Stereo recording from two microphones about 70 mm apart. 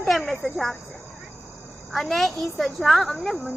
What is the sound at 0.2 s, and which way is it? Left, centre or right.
Speech, centre.